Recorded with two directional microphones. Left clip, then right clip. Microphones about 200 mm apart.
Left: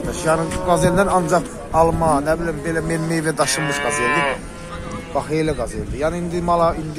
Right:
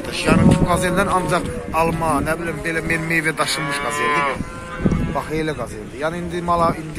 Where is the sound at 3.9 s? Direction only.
30° left (ahead or behind).